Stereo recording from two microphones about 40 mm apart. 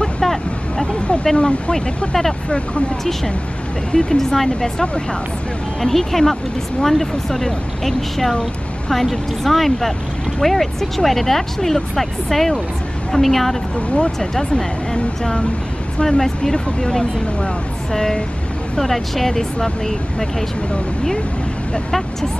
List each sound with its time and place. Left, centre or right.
0.2 s hubbub: centre
1.2 s speech: centre
3.9 s speech: centre
13.7 s speech: left
16.0 s speech: centre